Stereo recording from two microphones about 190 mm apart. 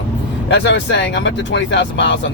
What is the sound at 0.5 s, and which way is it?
Speech, 65° left (ahead or behind).